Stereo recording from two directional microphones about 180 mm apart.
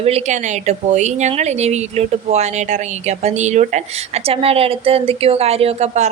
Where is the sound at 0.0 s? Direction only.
35° right (ahead or behind).